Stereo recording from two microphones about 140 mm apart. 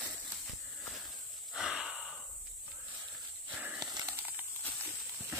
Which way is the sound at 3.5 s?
10° right (ahead or behind).